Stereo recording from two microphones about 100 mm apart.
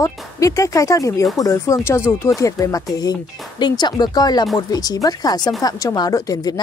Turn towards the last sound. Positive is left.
turn(degrees=40)  # may be behind; listen again after turning